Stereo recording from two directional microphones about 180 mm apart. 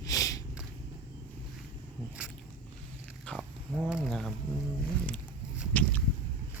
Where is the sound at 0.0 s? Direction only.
20° left (ahead or behind).